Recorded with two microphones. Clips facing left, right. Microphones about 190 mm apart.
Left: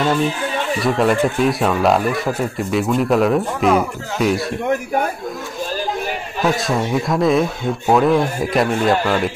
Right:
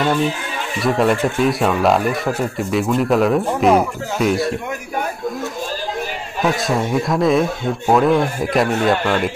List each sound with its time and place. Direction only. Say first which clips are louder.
0.8 s speech: right 1 dB; centre (ahead or behind)
6.4 s speech: even; centre (ahead or behind)